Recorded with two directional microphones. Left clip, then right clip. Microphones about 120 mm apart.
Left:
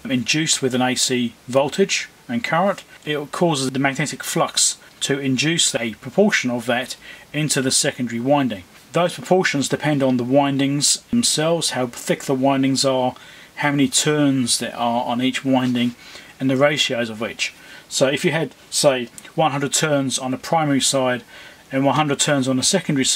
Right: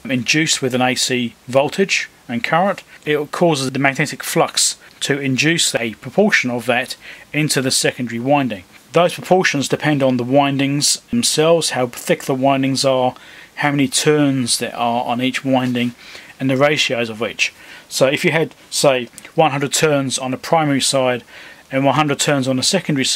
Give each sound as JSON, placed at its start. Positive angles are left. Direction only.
{"t": 0.1, "sound": "speech", "side_deg": -20}